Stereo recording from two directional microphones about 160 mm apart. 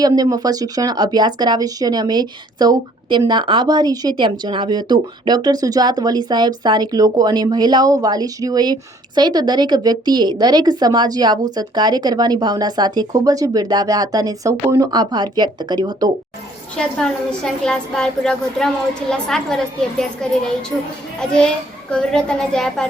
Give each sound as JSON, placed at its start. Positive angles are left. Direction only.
{"t": 0.0, "sound": "a woman's voice", "side_deg": -25}
{"t": 16.7, "sound": "a woman's voice", "side_deg": 5}
{"t": 21.2, "sound": "a woman's voice", "side_deg": 5}